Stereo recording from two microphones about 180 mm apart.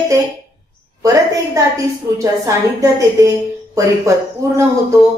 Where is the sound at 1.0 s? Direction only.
20° right (ahead or behind).